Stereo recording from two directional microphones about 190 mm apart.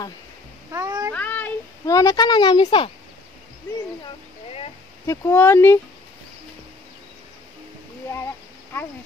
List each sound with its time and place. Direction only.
0.7 s cat: 20° right (ahead or behind)
1.1 s a child's voice: 10° left (ahead or behind); by 2.9 s 25° left (ahead or behind)
5.0 s speech: 15° left (ahead or behind)